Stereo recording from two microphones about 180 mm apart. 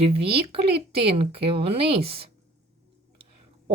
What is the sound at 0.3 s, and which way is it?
A woman's voice, 30° right (ahead or behind).